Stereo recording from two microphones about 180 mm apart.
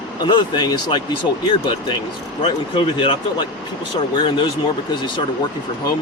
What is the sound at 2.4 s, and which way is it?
Speech, 30° left (ahead or behind).